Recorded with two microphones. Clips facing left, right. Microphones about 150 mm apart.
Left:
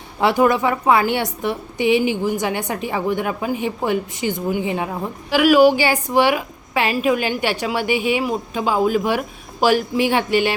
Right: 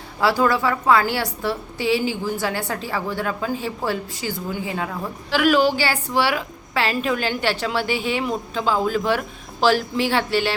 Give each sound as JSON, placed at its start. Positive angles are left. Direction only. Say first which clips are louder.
{"t": 0.2, "sound": "a woman's voice", "louder": "left 3 dB", "side_deg": 20}